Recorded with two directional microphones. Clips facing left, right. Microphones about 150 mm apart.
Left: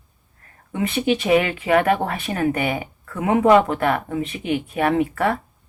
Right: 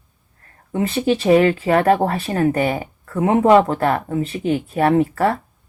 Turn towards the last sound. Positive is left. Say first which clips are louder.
# right 3 dB
turn(degrees=-40)  # may be behind; listen again after turning